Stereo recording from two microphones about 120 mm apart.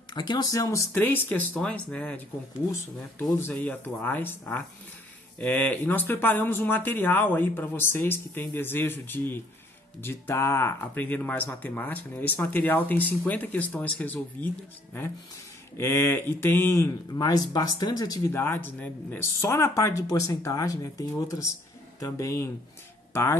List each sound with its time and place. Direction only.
0.1 s speech: 40° left (ahead or behind); by 2.2 s 10° left (ahead or behind)
3.3 s speech: 15° left (ahead or behind)
15.8 s speech: 20° left (ahead or behind)
18.3 s speech: 15° left (ahead or behind)